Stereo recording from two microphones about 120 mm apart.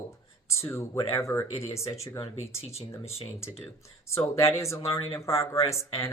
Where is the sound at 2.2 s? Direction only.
60° left (ahead or behind).